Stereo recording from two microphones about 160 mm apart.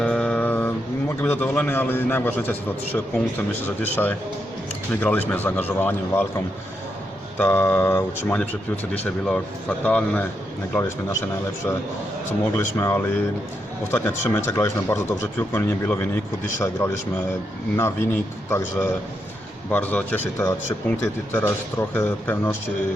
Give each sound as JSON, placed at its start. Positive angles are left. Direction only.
{"t": 0.0, "sound": "a sound", "side_deg": 5}
{"t": 1.2, "sound": "a man's voice", "side_deg": 10}
{"t": 7.3, "sound": "a man's voice", "side_deg": 10}